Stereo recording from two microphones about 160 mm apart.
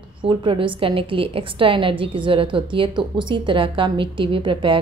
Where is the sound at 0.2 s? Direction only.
30° right (ahead or behind).